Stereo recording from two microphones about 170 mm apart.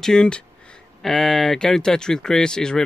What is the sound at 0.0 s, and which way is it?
Speech, 5° left (ahead or behind).